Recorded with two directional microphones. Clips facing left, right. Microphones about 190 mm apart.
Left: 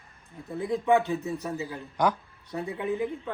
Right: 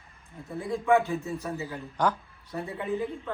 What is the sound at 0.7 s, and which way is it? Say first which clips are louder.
A man's voice: even; 20° left (ahead or behind).